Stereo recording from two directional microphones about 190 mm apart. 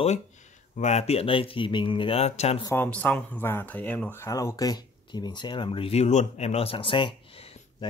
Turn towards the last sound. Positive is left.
turn(degrees=30)  # may be behind; listen again after turning